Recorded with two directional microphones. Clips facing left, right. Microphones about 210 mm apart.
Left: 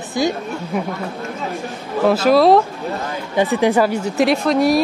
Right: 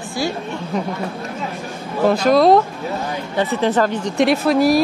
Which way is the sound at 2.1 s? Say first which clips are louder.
Left 1 dB; 5° left (ahead or behind).